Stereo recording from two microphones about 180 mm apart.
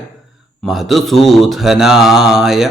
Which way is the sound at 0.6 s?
Centre (ahead or behind).